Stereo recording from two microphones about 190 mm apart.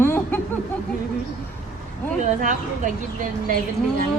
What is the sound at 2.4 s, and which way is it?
Speech, 40° right (ahead or behind).